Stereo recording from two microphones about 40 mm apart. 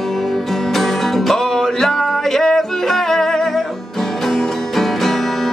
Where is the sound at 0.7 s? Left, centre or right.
Centre.